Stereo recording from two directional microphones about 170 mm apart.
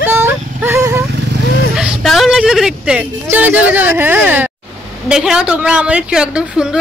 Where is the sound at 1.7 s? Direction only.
Centre (ahead or behind).